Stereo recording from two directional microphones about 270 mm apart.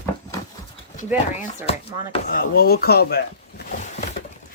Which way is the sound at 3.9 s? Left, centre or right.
Left.